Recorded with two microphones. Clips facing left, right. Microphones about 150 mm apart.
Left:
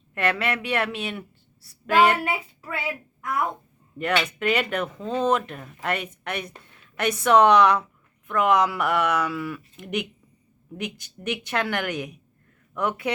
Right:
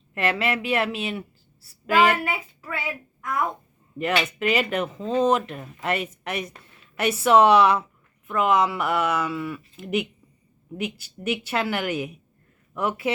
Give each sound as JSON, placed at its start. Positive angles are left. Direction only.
{"t": 0.1, "sound": "speech", "side_deg": -5}
{"t": 2.2, "sound": "speech", "side_deg": 15}
{"t": 3.9, "sound": "a woman's voice", "side_deg": -5}